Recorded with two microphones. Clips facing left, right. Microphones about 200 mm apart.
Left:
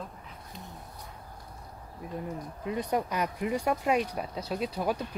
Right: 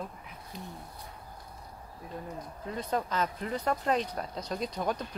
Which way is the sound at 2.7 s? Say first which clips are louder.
Left 3 dB; 15° left (ahead or behind).